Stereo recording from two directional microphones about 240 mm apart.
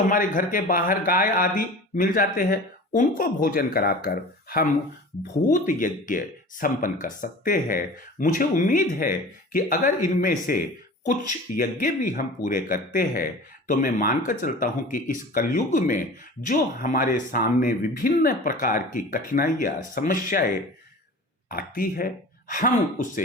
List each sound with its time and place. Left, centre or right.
0.1 s speech: left
21.5 s speech: left